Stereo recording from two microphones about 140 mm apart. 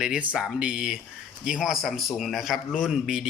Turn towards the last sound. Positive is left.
turn(degrees=-5)  # may be behind; listen again after turning